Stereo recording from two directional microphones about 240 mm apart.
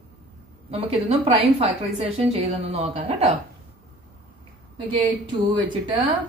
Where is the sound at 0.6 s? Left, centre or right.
Right.